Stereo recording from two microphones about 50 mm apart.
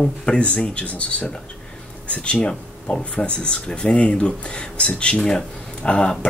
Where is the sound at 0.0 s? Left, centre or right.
Left.